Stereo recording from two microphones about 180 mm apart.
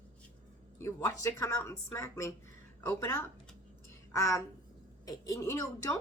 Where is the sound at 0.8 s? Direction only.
15° left (ahead or behind).